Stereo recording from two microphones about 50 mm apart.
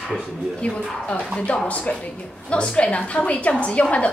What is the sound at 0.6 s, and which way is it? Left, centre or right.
A woman's voice, left.